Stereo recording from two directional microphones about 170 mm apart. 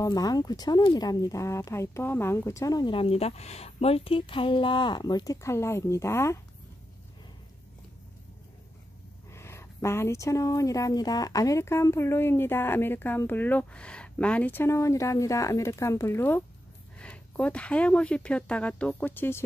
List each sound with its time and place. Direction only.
0.0 s speech: 20° left (ahead or behind)
9.3 s a woman's voice: 15° left (ahead or behind)